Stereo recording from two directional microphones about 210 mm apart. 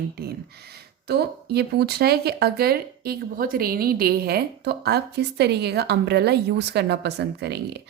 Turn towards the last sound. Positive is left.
turn(degrees=-50)  # may be behind; listen again after turning